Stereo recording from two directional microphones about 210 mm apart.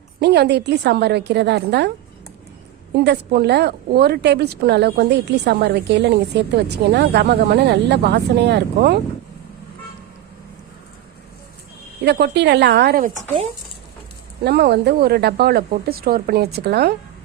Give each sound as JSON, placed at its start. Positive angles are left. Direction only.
{"t": 0.2, "sound": "a woman's voice", "side_deg": -55}
{"t": 2.9, "sound": "a woman's voice", "side_deg": -50}
{"t": 12.0, "sound": "a woman's voice", "side_deg": -50}
{"t": 14.4, "sound": "a woman's voice", "side_deg": -50}